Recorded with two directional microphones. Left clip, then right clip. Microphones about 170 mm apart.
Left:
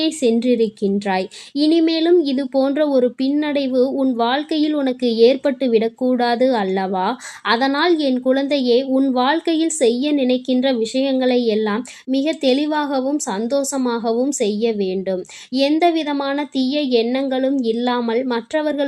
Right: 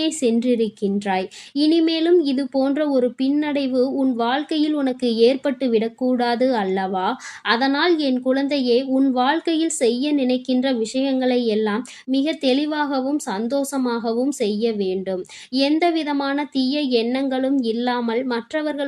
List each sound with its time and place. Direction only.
0.0 s speech: 25° left (ahead or behind)